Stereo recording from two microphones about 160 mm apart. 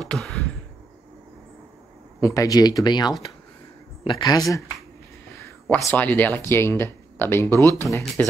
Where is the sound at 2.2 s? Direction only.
20° left (ahead or behind).